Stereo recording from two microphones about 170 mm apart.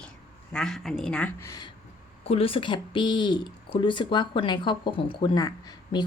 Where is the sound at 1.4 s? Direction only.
20° left (ahead or behind).